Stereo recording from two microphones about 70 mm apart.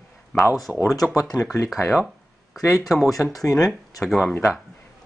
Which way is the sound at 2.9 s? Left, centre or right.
Centre.